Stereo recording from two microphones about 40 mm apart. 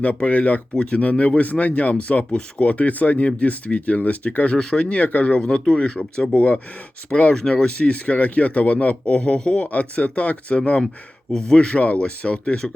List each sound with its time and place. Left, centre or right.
0.3 s speech: left
0.8 s speech: left
4.5 s speech: centre
4.9 s speech: left
5.4 s speech: left
7.1 s speech: centre
7.5 s speech: left
9.1 s speech: left
9.6 s speech: left
11.3 s speech: centre
11.8 s speech: left